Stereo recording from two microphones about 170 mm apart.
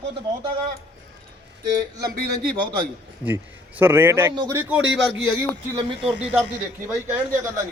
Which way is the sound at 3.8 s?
15° right (ahead or behind).